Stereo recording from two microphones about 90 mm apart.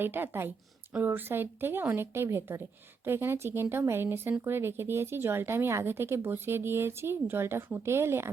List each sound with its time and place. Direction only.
0.0 s a woman's voice: 25° right (ahead or behind)